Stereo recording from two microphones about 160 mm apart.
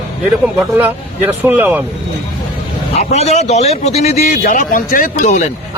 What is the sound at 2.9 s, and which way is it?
A man's voice, 45° left (ahead or behind).